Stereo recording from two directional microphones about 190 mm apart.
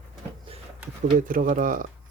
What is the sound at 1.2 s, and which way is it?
Speech, 45° right (ahead or behind).